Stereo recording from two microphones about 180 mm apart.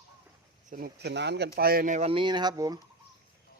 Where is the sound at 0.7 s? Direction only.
60° right (ahead or behind).